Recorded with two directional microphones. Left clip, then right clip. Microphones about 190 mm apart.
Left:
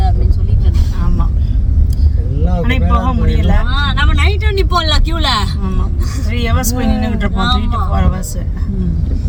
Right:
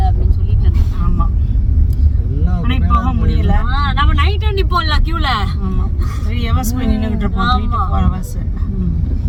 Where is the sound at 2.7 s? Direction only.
25° left (ahead or behind).